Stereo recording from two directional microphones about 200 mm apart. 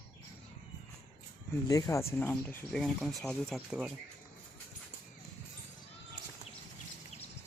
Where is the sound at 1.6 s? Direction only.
20° left (ahead or behind); by 3.9 s 5° right (ahead or behind).